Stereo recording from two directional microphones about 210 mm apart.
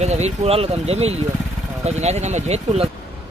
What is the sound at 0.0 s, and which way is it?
Speech, 30° right (ahead or behind).